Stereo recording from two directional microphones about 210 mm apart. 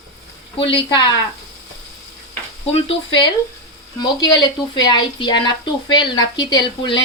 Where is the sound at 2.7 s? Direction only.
30° left (ahead or behind).